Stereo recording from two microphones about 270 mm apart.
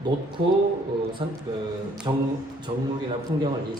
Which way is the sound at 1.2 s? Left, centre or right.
Centre.